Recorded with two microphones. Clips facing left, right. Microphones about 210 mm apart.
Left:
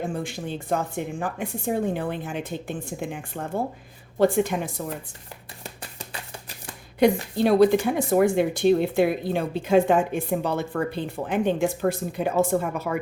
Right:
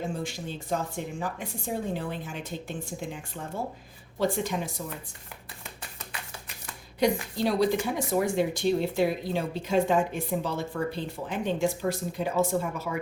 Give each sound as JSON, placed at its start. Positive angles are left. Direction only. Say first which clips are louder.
{"t": 0.1, "sound": "a woman's voice", "louder": "left 4 dB", "side_deg": 55}
{"t": 7.0, "sound": "a woman's voice", "louder": "left 6 dB", "side_deg": 55}